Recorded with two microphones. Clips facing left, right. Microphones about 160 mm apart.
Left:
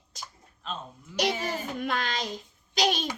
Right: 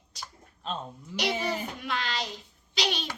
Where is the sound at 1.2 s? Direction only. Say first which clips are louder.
Left 1 dB; 45° left (ahead or behind).